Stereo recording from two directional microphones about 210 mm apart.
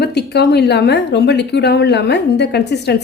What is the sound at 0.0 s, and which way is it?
Speech, 50° left (ahead or behind).